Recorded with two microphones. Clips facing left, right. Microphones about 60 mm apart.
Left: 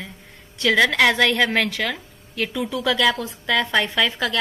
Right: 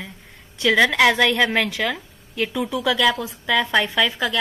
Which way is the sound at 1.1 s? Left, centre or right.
Centre.